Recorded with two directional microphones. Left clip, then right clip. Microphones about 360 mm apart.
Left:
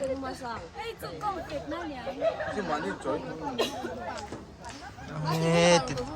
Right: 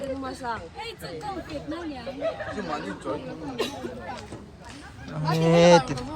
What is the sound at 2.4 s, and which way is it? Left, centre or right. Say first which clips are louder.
Speech: left 1 dB; left.